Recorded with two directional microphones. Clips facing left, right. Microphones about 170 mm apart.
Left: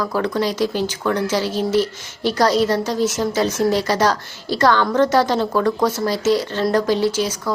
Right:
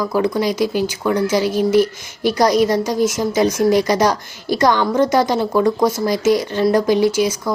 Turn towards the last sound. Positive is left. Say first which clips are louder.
# right 3 dB
turn(degrees=-15)  # may be behind; listen again after turning